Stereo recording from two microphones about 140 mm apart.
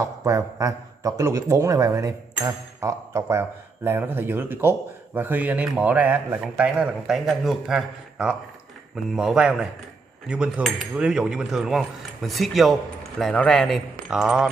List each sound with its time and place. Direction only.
0.0 s a man's voice: 20° right (ahead or behind); by 14.5 s 5° right (ahead or behind)